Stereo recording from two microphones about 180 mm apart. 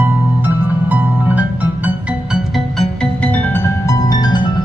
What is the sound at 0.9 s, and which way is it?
Music, 10° right (ahead or behind).